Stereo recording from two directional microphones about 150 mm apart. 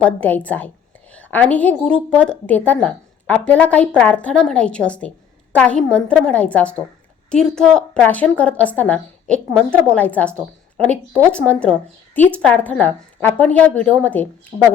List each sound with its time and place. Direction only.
0.0 s a woman's voice: 10° left (ahead or behind)
14.5 s speech: 25° right (ahead or behind)